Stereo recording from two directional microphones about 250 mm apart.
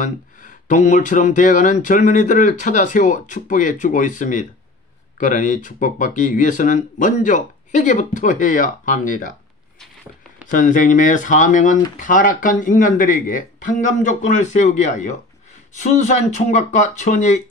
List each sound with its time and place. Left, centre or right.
0.0 s speech: left
10.4 s speech: left